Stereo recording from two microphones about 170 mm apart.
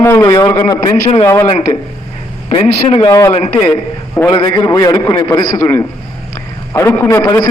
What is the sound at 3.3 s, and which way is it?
Speech, 35° left (ahead or behind).